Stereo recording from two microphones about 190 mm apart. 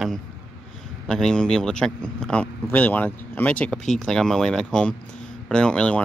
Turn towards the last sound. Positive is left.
turn(degrees=5)  # may be behind; listen again after turning